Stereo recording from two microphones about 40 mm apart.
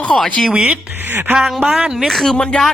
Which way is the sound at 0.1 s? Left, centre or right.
Left.